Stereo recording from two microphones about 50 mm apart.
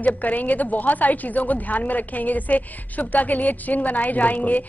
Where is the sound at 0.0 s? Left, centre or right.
Left.